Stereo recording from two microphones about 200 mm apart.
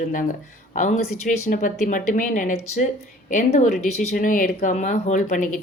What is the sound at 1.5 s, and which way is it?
Speech, 40° left (ahead or behind).